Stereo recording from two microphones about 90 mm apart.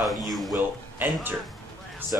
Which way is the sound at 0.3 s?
Centre (ahead or behind).